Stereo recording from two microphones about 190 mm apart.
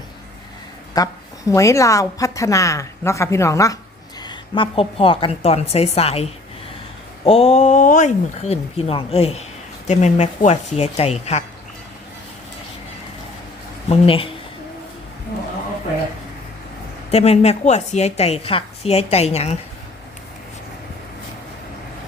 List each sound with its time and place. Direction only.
0.9 s a woman's voice: 20° left (ahead or behind); by 11.4 s 35° left (ahead or behind)
13.9 s speech: 30° left (ahead or behind)
17.1 s a woman's voice: 35° left (ahead or behind)